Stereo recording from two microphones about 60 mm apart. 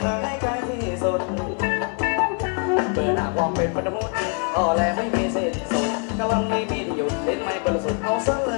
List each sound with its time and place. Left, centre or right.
1.0 s music: centre